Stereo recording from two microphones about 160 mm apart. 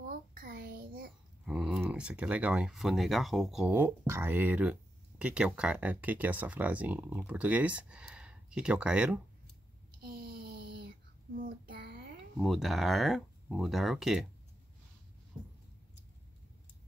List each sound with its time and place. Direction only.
0.3 s a sound: 65° right (ahead or behind)
1.4 s speech: 5° right (ahead or behind)
11.3 s child singing: 65° right (ahead or behind); by 12.1 s 85° right
12.4 s speech: centre (ahead or behind)